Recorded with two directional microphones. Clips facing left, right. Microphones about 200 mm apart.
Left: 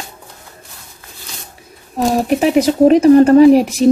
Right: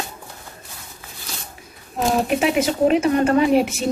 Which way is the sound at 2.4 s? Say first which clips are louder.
Left 7 dB; 40° left (ahead or behind).